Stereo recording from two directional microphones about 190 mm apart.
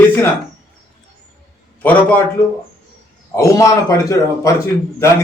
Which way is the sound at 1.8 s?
10° left (ahead or behind).